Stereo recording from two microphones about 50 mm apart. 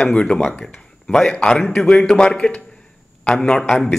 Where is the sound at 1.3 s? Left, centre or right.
Centre.